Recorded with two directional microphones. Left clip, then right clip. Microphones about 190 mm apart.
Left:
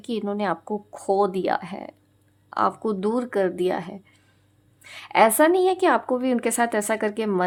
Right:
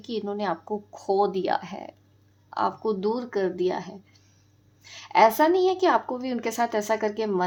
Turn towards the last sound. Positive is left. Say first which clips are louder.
# left 2 dB
turn(degrees=30)  # may be behind; listen again after turning